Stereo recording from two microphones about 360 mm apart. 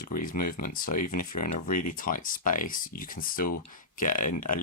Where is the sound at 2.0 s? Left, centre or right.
Left.